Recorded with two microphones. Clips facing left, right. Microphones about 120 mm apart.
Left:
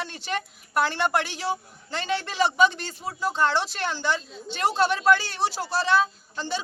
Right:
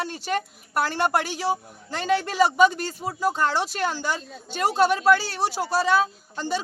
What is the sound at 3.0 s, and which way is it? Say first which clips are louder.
A man's voice: right 1 dB; 10° right (ahead or behind).